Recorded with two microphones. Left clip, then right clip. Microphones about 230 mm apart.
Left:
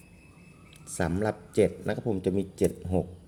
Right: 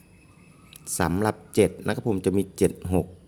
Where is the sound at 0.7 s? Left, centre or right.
Right.